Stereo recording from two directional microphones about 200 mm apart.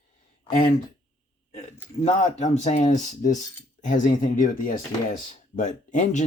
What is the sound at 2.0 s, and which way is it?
Speech, 35° left (ahead or behind).